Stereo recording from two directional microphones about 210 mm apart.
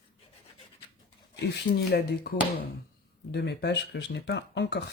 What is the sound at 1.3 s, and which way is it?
Speech, 50° left (ahead or behind).